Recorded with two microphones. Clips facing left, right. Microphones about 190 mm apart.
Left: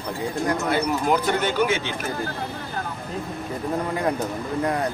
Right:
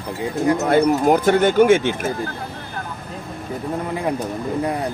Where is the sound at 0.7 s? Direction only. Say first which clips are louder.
Right 8 dB; 50° right (ahead or behind).